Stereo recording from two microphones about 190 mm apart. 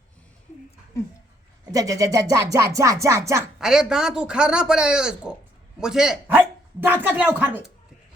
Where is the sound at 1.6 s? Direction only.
20° right (ahead or behind).